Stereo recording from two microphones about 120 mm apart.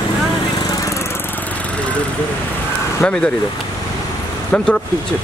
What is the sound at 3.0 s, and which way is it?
Speech, 10° left (ahead or behind).